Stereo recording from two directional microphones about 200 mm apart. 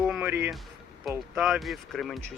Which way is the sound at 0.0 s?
5° right (ahead or behind).